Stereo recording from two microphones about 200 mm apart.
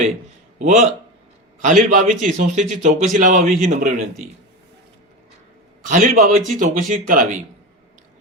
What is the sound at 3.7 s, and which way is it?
Speech, 40° right (ahead or behind).